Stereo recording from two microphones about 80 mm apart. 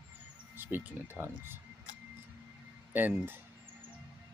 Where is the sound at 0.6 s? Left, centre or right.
Right.